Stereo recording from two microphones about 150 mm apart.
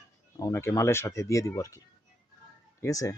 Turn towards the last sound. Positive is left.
turn(degrees=20)  # may be behind; listen again after turning